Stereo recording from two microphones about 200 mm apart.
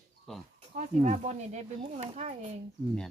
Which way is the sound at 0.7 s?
35° right (ahead or behind).